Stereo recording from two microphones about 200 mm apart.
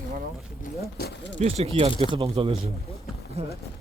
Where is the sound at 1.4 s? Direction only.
30° right (ahead or behind).